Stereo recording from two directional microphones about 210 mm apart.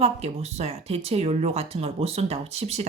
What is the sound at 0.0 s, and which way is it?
Speech, 30° right (ahead or behind).